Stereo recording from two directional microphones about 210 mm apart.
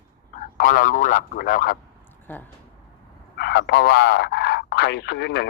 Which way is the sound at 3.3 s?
50° left (ahead or behind).